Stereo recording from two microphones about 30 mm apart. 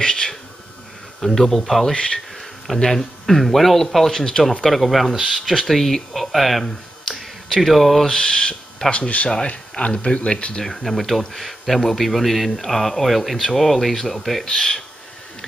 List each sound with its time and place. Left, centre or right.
0.0 s a sound: left
1.2 s speech: centre
2.1 s insect: centre
2.9 s speech: centre
4.2 s owl: centre
4.6 s speech: centre
5.6 s speech: centre
6.6 s finger snapping: centre
7.2 s a sound: centre
8.1 s owl: left
8.9 s speech: left
10.6 s speech: centre
14.4 s owl: centre